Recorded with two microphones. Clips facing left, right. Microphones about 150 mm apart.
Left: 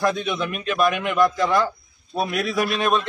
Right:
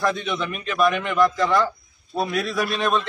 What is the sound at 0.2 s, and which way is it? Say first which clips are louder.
A man's voice: left 1 dB; centre (ahead or behind).